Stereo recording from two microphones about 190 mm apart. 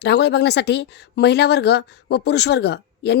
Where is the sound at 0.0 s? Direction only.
60° left (ahead or behind).